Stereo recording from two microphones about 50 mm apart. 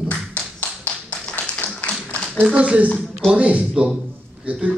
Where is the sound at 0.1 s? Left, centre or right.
Left.